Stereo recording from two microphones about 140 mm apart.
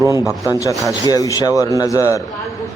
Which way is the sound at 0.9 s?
25° left (ahead or behind).